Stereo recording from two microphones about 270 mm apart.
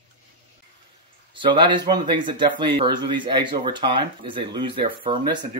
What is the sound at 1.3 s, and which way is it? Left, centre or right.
A man's voice, centre.